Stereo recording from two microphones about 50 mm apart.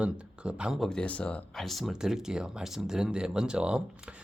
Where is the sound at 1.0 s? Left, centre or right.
Left.